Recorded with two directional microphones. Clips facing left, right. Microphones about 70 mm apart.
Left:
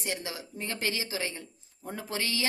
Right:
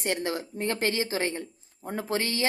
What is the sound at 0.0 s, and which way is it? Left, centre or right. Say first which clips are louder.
Speech: right 7 dB; right.